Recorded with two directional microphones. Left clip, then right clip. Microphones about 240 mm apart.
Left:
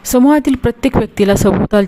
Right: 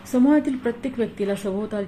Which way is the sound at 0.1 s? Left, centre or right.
Left.